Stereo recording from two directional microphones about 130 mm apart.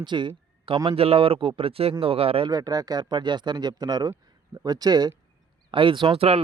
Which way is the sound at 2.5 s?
30° right (ahead or behind).